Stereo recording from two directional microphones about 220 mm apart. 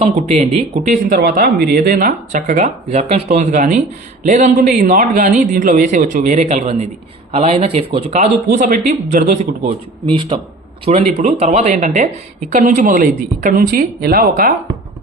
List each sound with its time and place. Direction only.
0.0 s speech: 30° right (ahead or behind)
10.1 s a man's voice: 20° right (ahead or behind); by 14.5 s 45° right (ahead or behind)